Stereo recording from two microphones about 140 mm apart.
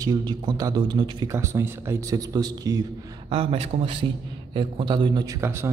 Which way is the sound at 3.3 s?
40° right (ahead or behind).